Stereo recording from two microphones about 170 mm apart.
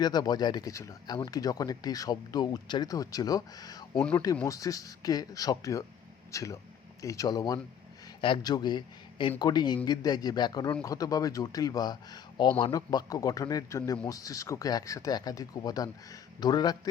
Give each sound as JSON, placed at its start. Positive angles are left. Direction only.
{"t": 0.0, "sound": "speech", "side_deg": 25}